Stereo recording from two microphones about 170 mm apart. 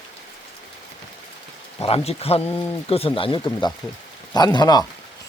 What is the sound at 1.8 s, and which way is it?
Speech, 35° left (ahead or behind).